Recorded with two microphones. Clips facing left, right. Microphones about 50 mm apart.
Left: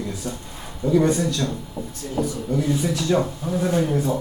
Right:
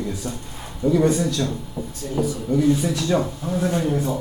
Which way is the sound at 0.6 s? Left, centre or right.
Centre.